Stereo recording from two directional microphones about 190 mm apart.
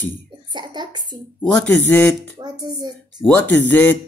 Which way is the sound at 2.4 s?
20° right (ahead or behind).